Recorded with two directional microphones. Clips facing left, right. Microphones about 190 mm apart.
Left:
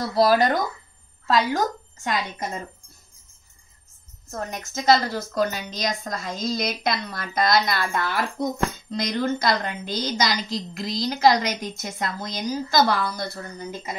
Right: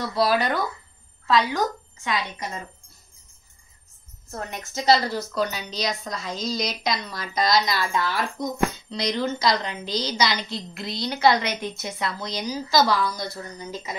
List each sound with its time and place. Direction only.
0.1 s a woman's voice: 45° left (ahead or behind)
4.3 s a woman's voice: 45° left (ahead or behind)